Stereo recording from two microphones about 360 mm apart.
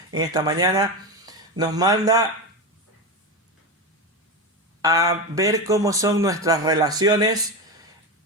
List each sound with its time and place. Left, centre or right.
0.1 s speech: centre
4.8 s speech: centre